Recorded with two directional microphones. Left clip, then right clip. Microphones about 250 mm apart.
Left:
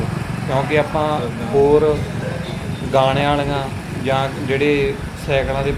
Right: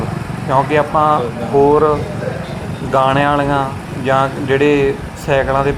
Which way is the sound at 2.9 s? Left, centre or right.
Centre.